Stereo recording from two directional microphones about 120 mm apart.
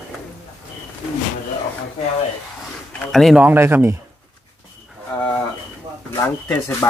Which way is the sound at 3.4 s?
15° right (ahead or behind).